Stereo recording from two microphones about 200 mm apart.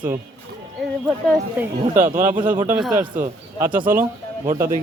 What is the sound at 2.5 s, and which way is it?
Speech, 10° right (ahead or behind).